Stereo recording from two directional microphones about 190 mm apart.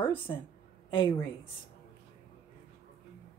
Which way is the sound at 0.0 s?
25° left (ahead or behind).